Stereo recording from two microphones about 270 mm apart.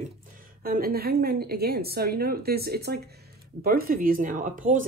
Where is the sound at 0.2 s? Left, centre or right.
Right.